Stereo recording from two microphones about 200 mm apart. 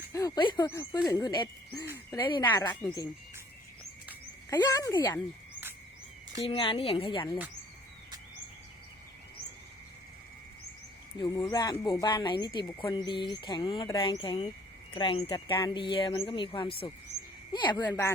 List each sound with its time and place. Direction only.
0.1 s speech: 15° left (ahead or behind)
4.4 s speech: 20° left (ahead or behind)
6.4 s speech: 25° left (ahead or behind)
11.2 s speech: 20° left (ahead or behind)